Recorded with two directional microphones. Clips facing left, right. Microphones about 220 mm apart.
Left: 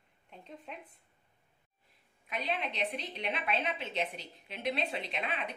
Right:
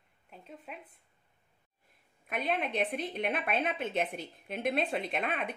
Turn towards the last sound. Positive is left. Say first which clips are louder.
# right 4 dB
turn(degrees=-50)  # may be behind; listen again after turning